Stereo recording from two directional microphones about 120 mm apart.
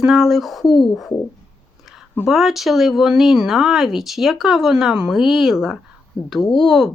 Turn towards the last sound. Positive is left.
turn(degrees=0)  # may be behind; listen again after turning